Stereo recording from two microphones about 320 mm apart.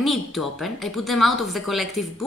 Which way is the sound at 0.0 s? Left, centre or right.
Centre.